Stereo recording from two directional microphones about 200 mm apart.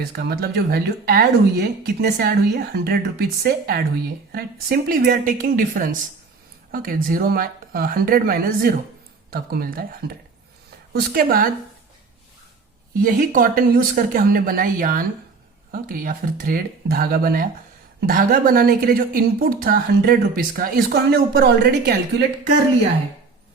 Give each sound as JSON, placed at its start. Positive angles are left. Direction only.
{"t": 0.0, "sound": "a woman's voice", "side_deg": -50}
{"t": 13.0, "sound": "a woman's voice", "side_deg": -40}